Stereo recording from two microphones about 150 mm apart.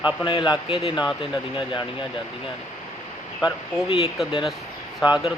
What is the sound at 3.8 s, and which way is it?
Speech, 35° left (ahead or behind).